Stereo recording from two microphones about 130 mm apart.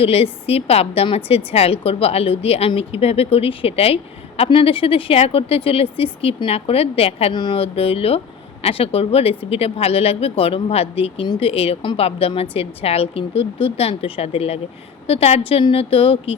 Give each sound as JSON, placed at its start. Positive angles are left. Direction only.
{"t": 0.0, "sound": "a woman's voice", "side_deg": 50}
{"t": 7.3, "sound": "a woman's voice", "side_deg": 40}